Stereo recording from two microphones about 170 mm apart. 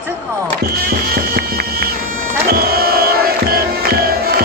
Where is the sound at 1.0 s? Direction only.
65° right (ahead or behind).